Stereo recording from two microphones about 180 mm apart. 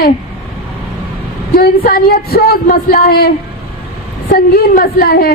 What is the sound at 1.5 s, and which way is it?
Speech, 55° left (ahead or behind).